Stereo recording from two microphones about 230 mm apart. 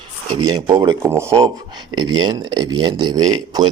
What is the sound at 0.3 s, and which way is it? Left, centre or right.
Speech, centre.